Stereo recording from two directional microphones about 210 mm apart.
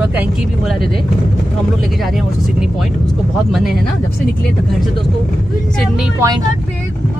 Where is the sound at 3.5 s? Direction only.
Centre (ahead or behind).